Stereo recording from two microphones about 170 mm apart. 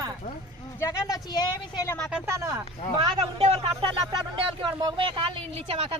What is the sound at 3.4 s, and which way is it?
Speech, 40° right (ahead or behind).